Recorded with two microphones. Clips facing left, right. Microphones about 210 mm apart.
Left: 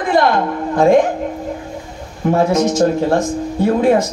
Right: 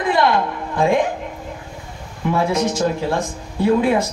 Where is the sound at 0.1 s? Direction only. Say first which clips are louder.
Left 4 dB; 45° left (ahead or behind).